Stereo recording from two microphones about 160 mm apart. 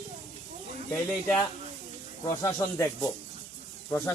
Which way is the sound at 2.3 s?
20° left (ahead or behind).